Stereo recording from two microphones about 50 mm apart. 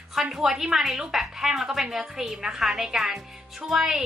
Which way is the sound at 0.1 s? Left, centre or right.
Centre.